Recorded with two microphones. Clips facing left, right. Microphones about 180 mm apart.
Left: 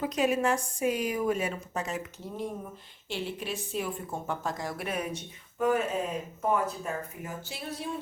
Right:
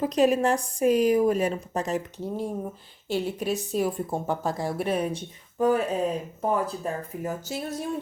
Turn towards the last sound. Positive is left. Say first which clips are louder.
# right 6 dB
turn(degrees=-45)  # may be behind; listen again after turning